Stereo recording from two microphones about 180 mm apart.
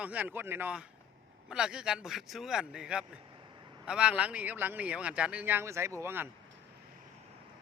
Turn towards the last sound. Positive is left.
turn(degrees=-15)  # may be behind; listen again after turning